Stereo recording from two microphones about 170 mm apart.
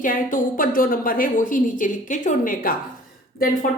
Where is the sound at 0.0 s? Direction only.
50° left (ahead or behind).